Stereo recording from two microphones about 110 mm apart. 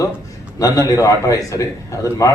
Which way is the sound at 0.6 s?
30° left (ahead or behind).